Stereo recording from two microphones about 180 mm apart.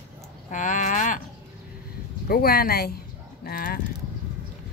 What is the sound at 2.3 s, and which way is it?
Speech, 55° left (ahead or behind).